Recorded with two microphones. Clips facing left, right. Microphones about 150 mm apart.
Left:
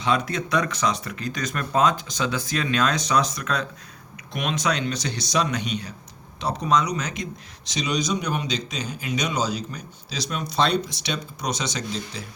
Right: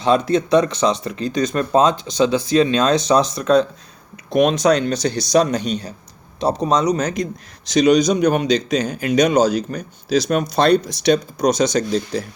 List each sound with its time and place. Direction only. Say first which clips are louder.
0.0 s speech: right 8 dB; 30° right (ahead or behind)